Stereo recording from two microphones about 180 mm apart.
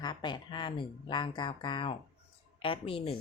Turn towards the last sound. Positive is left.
turn(degrees=30)  # may be behind; listen again after turning